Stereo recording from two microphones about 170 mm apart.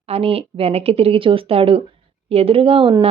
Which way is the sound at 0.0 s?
35° right (ahead or behind).